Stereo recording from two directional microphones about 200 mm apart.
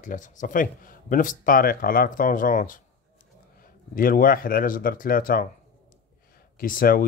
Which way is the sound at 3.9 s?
45° left (ahead or behind).